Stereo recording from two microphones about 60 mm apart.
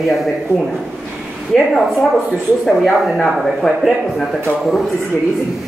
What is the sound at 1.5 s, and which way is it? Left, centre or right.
Speech, centre.